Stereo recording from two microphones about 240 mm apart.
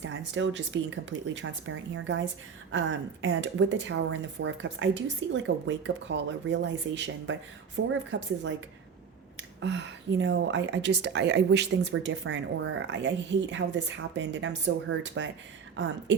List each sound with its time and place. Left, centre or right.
0.0 s a woman's voice: right
9.6 s a woman's voice: right